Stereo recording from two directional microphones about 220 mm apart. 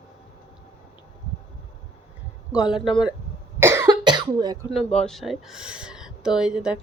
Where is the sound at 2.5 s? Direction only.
5° right (ahead or behind).